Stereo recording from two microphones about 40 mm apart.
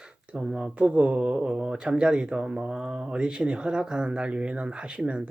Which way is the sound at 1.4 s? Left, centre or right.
Centre.